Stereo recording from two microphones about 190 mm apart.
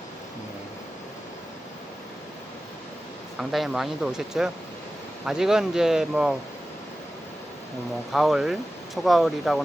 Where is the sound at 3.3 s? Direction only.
Centre (ahead or behind).